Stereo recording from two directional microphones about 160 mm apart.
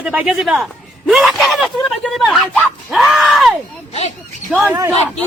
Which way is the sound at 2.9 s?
Centre (ahead or behind).